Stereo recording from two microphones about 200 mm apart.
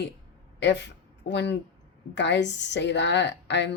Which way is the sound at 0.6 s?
60° left (ahead or behind).